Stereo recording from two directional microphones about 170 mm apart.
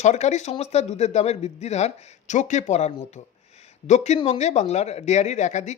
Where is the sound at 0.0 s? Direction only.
40° left (ahead or behind).